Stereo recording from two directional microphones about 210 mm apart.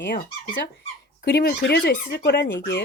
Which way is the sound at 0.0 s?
55° left (ahead or behind).